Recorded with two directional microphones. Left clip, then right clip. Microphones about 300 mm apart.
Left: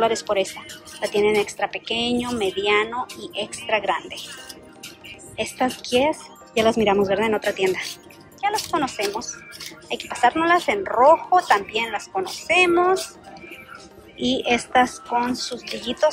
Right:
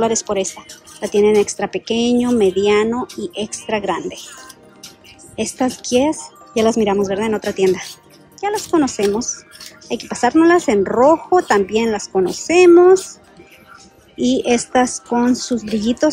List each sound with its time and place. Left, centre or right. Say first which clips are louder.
0.0 s speech: right 2 dB; centre
5.3 s speech: right 3 dB; centre
14.2 s speech: right 5 dB; centre